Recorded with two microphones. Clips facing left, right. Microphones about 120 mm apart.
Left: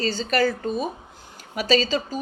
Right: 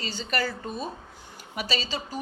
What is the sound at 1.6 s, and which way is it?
Speech, 90° left.